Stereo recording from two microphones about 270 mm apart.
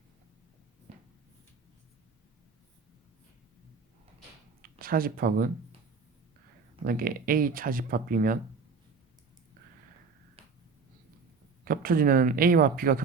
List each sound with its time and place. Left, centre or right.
0.9 s a sound: right
4.6 s speech: right
6.8 s speech: right
10.4 s finger snapping: right
11.6 s speech: right